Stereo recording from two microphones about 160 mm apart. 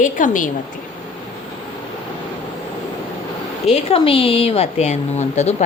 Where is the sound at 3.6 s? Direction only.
40° left (ahead or behind).